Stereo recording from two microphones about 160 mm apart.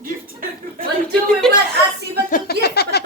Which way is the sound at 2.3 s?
80° left.